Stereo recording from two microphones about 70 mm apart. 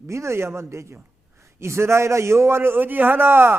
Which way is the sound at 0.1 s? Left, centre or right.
Right.